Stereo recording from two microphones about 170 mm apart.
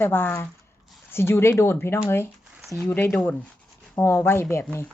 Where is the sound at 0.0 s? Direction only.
15° left (ahead or behind).